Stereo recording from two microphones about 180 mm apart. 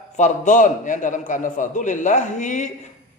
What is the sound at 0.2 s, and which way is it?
A man's voice, 45° left (ahead or behind).